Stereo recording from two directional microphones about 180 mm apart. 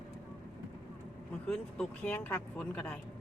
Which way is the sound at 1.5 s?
5° left (ahead or behind).